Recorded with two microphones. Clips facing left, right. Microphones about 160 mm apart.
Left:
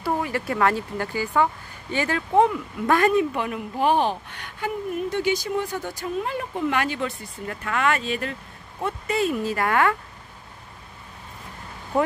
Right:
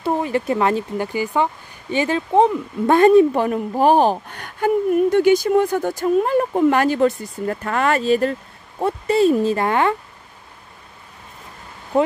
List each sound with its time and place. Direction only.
0.0 s speech: 20° right (ahead or behind)